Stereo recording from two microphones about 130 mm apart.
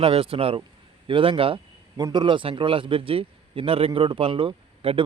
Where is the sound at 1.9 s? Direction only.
35° right (ahead or behind).